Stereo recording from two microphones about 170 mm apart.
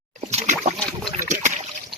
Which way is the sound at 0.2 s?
40° right (ahead or behind).